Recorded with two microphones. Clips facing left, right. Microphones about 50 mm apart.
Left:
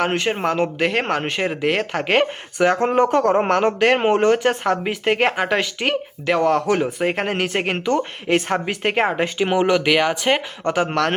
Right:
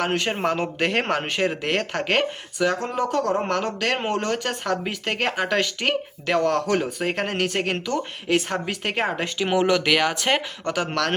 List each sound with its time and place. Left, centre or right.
0.0 s speech: centre
2.7 s a man's voice: left; by 10.4 s centre
10.6 s a man's voice: left